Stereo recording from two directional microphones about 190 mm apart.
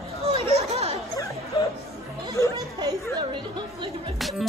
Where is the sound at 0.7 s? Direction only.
35° right (ahead or behind).